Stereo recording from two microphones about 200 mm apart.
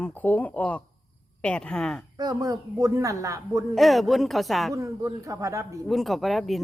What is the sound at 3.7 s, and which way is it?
Speech, centre (ahead or behind).